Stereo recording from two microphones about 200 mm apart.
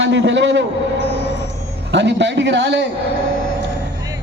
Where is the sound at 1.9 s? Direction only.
60° right (ahead or behind).